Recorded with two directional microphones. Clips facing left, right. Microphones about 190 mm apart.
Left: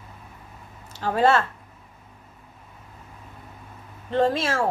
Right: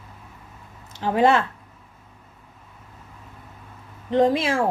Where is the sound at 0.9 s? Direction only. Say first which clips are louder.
Right 2 dB; 15° right (ahead or behind).